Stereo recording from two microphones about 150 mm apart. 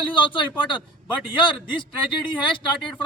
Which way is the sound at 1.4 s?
35° left (ahead or behind).